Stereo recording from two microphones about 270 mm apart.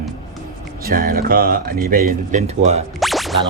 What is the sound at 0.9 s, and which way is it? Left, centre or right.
Speech, right.